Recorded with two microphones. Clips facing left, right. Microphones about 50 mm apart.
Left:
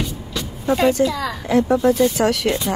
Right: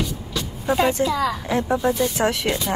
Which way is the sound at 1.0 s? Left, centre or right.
Centre.